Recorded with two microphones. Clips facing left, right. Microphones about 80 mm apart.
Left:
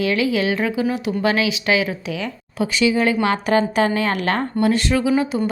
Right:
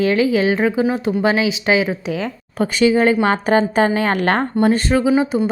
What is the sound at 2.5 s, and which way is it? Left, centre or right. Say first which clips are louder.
A woman's voice: right 4 dB; right.